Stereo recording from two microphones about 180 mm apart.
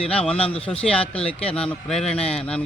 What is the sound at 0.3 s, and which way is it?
Speech, 30° left (ahead or behind).